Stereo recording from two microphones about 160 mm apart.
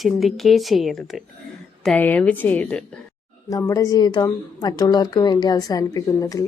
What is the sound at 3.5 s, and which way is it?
A woman's voice, 20° left (ahead or behind).